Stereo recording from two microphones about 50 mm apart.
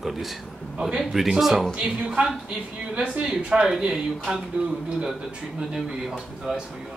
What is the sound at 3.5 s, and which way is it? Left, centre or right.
Speech, centre.